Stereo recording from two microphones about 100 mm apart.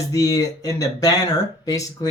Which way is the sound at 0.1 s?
35° left (ahead or behind).